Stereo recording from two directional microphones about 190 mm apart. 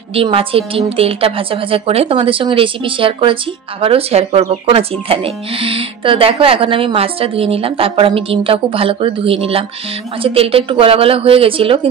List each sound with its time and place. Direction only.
0.1 s speech: 30° right (ahead or behind)